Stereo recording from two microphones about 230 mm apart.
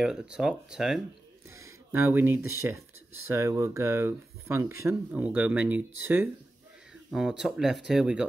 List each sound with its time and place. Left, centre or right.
0.0 s speech: centre
1.5 s a sound: centre
2.6 s speech: centre
7.1 s speech: centre